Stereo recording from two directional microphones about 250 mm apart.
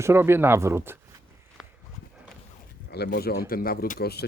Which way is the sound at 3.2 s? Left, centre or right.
Left.